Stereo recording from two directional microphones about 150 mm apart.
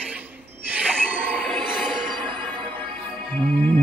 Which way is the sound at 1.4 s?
Centre (ahead or behind).